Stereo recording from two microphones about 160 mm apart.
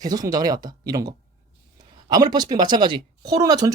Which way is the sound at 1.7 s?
25° right (ahead or behind).